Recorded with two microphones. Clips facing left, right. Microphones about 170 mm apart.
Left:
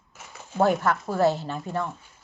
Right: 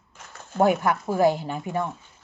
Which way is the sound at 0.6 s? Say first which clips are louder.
Right 1 dB; 15° right (ahead or behind).